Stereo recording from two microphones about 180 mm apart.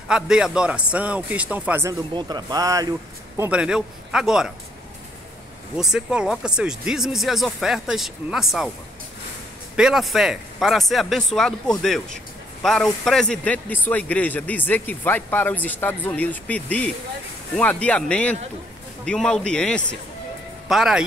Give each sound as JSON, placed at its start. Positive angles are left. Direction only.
{"t": 0.1, "sound": "a man's voice", "side_deg": -5}
{"t": 2.1, "sound": "speech", "side_deg": -25}
{"t": 3.3, "sound": "speech", "side_deg": -5}
{"t": 5.8, "sound": "speech", "side_deg": -5}
{"t": 9.8, "sound": "speech", "side_deg": 0}